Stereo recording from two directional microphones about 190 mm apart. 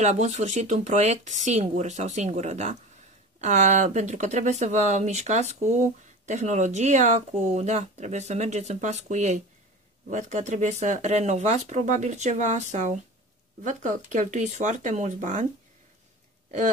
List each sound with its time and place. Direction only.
0.0 s speech: 40° right (ahead or behind)